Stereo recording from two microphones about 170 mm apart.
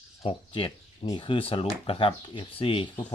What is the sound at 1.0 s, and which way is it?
Speech, 30° left (ahead or behind).